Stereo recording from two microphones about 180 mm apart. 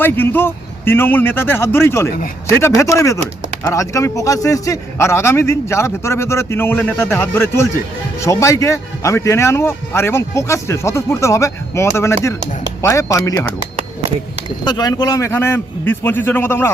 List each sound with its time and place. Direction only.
0.0 s a man's voice: 10° left (ahead or behind)
14.6 s a man's voice: 20° left (ahead or behind)